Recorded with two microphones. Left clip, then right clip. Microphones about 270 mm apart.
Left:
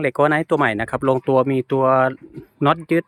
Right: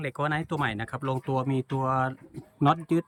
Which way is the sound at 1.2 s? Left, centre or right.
Centre.